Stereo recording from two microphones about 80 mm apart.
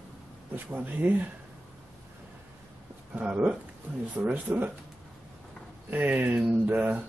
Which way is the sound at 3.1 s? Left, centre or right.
Centre.